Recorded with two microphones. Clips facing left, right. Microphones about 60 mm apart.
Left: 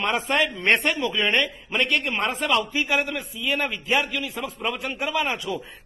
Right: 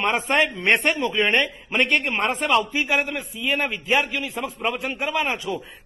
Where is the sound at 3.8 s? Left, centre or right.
Centre.